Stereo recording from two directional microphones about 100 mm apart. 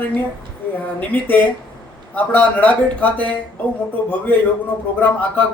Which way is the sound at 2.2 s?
15° left (ahead or behind).